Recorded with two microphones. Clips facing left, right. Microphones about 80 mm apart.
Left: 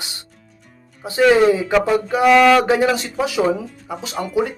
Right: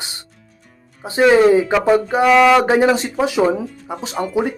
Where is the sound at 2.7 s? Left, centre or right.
Right.